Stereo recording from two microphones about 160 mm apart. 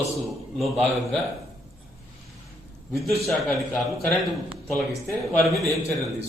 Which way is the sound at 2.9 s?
Centre (ahead or behind).